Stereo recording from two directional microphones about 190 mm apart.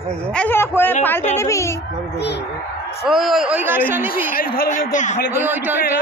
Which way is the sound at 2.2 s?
60° left (ahead or behind).